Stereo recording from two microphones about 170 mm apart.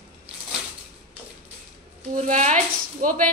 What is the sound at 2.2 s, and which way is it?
A woman's voice, 45° right (ahead or behind).